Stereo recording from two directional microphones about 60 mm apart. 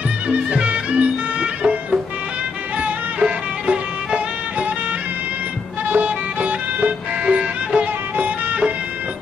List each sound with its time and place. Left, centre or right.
0.3 s music: right
5.9 s music: right